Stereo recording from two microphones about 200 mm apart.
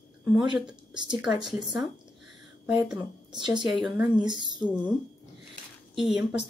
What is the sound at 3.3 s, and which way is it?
Speech, 20° right (ahead or behind).